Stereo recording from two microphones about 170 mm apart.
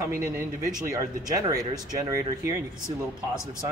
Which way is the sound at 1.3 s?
20° right (ahead or behind).